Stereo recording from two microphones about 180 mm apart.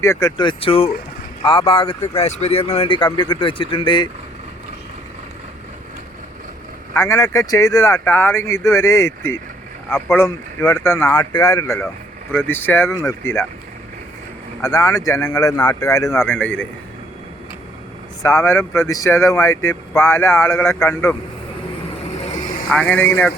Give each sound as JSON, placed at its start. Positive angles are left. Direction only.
{"t": 0.0, "sound": "speech", "side_deg": 15}
{"t": 6.9, "sound": "speech", "side_deg": 15}
{"t": 14.6, "sound": "speech", "side_deg": 20}
{"t": 18.2, "sound": "speech", "side_deg": 15}
{"t": 22.7, "sound": "speech", "side_deg": 10}